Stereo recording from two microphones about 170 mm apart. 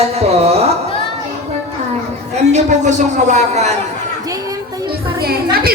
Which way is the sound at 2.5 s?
45° right (ahead or behind).